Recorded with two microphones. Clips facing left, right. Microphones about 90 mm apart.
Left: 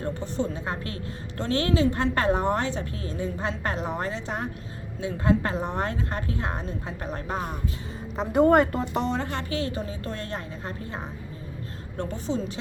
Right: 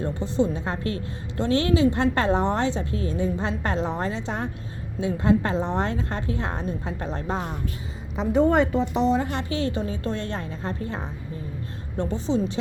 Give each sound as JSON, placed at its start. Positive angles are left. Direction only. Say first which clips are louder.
{"t": 0.0, "sound": "a woman's voice", "louder": "right 5 dB", "side_deg": -20}
{"t": 0.6, "sound": "a woman's voice", "louder": "right 4 dB", "side_deg": -30}
{"t": 8.1, "sound": "a woman's voice", "louder": "left 1 dB", "side_deg": 5}
{"t": 9.2, "sound": "a woman's voice", "louder": "right 2 dB", "side_deg": -20}
{"t": 9.6, "sound": "a woman's voice", "louder": "right 3 dB", "side_deg": -30}
{"t": 11.9, "sound": "a woman's voice", "louder": "right 5 dB", "side_deg": -20}